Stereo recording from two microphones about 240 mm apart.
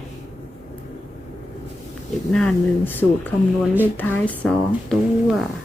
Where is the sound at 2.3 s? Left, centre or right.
Centre.